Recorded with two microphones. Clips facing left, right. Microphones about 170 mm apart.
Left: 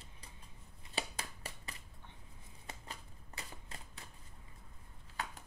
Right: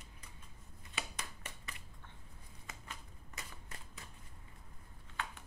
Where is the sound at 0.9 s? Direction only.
35° left (ahead or behind).